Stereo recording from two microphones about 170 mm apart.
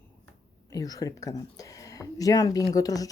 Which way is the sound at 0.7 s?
20° left (ahead or behind).